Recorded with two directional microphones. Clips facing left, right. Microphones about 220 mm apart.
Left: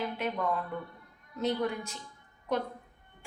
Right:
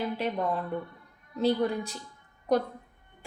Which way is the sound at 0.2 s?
30° right (ahead or behind).